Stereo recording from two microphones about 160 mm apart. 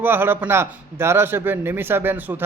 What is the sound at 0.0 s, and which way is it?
Speech, 15° right (ahead or behind).